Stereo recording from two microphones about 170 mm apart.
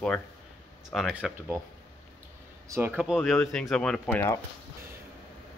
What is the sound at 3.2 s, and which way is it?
Speech, centre (ahead or behind).